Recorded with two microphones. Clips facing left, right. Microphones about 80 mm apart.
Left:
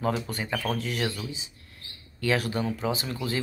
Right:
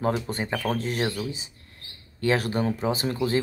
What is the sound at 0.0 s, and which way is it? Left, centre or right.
Speech, right.